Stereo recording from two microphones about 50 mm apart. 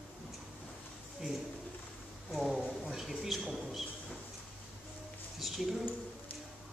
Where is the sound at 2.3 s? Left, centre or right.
Centre.